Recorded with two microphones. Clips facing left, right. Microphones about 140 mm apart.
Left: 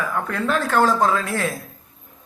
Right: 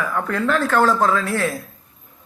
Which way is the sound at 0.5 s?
15° left (ahead or behind).